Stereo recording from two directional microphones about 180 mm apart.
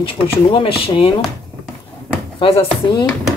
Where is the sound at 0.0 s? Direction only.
30° left (ahead or behind).